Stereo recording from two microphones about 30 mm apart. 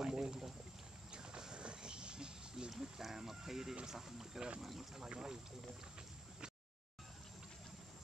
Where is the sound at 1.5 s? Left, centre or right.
Right.